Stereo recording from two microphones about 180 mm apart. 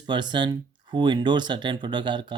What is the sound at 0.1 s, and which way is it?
Speech, 25° right (ahead or behind).